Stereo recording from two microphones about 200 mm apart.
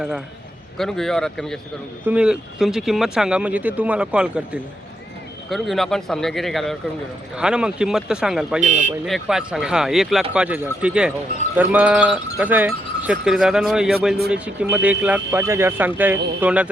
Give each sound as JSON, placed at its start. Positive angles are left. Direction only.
{"t": 0.8, "sound": "speech", "side_deg": 0}
{"t": 8.6, "sound": "speech", "side_deg": -35}
{"t": 9.0, "sound": "speech", "side_deg": 0}